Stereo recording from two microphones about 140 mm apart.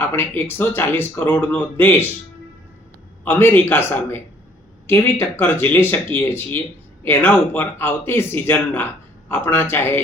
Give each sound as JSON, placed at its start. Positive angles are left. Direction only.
{"t": 0.0, "sound": "speech", "side_deg": 15}
{"t": 3.2, "sound": "speech", "side_deg": 15}